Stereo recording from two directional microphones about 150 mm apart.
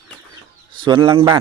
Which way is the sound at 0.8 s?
35° right (ahead or behind).